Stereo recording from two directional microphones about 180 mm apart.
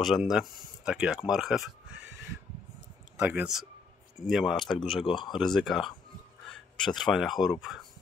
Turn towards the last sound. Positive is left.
turn(degrees=0)  # may be behind; listen again after turning